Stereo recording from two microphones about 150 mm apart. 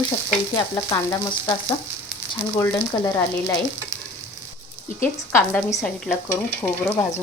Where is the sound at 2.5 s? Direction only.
20° left (ahead or behind).